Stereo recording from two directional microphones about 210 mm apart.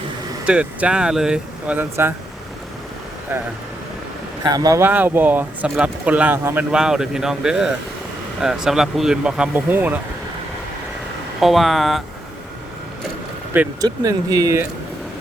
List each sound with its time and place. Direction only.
0.4 s speech: 5° right (ahead or behind)
4.4 s speech: 15° right (ahead or behind)
11.3 s speech: centre (ahead or behind)
13.8 s speech: 15° right (ahead or behind)